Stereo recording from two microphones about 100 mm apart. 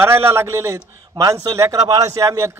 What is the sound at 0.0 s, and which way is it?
A man's voice, 25° right (ahead or behind).